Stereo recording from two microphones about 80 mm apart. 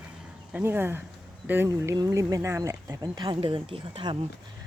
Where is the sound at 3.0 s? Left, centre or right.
Right.